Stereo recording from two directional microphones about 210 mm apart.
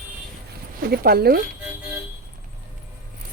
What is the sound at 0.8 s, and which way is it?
Speech, 45° right (ahead or behind).